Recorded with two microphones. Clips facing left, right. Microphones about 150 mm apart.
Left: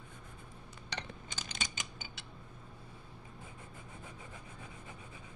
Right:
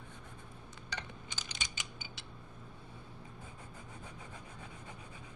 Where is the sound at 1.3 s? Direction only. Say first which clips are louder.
Left 4 dB; 50° left (ahead or behind).